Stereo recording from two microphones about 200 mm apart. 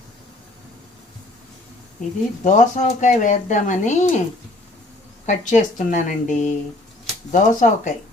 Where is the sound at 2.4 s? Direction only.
40° left (ahead or behind).